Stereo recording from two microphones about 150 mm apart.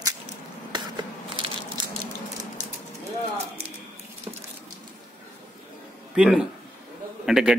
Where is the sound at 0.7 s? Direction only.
30° right (ahead or behind).